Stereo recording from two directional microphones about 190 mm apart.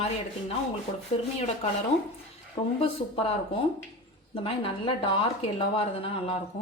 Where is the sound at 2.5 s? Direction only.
30° left (ahead or behind).